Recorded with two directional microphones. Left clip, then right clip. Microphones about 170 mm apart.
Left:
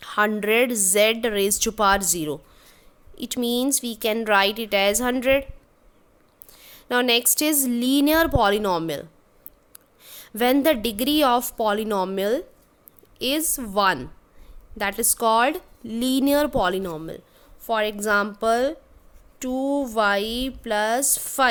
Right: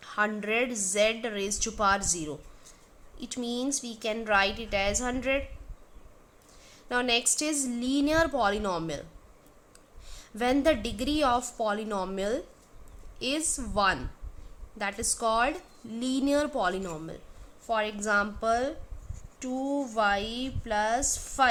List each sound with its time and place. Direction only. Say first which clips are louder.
0.0 s a woman's voice: left 7 dB; 65° left (ahead or behind)
6.5 s a woman's voice: left 7 dB; 60° left (ahead or behind)